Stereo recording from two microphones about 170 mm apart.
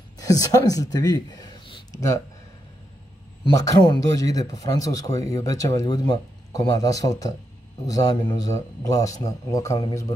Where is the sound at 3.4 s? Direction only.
25° left (ahead or behind).